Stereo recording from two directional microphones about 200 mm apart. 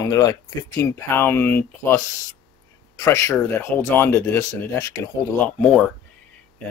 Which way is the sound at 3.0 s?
15° left (ahead or behind).